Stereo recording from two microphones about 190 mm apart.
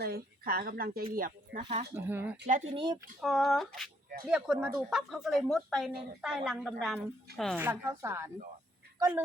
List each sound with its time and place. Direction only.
0.0 s speech: 55° right (ahead or behind)
1.6 s speech: 30° right (ahead or behind)
1.9 s speech: 10° right (ahead or behind)
2.7 s speech: 25° right (ahead or behind)
3.2 s speech: centre (ahead or behind)
7.6 s speech: 15° right (ahead or behind)